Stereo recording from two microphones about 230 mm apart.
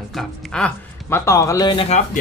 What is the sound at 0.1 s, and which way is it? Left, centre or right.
Speech, centre.